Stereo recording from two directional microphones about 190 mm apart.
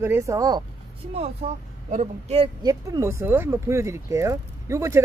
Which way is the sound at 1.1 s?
35° right (ahead or behind).